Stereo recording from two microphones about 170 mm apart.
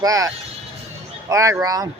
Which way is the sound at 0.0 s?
20° right (ahead or behind).